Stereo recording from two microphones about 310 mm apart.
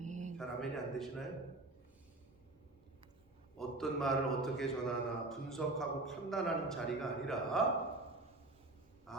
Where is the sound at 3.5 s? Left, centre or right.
Centre.